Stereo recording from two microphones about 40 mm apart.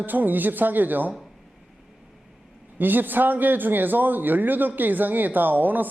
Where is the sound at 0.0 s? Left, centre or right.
Right.